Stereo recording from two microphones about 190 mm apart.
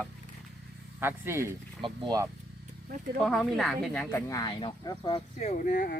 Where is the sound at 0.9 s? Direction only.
10° right (ahead or behind).